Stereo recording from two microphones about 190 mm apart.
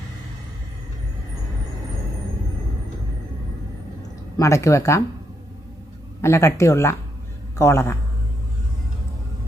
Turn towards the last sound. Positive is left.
turn(degrees=15)  # may be behind; listen again after turning